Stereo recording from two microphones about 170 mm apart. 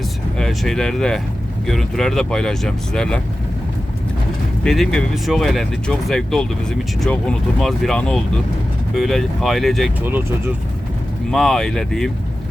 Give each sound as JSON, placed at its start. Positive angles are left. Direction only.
{"t": 0.3, "sound": "speech", "side_deg": 0}
{"t": 4.6, "sound": "speech", "side_deg": 0}
{"t": 10.0, "sound": "speech", "side_deg": -10}
{"t": 11.3, "sound": "speech", "side_deg": 0}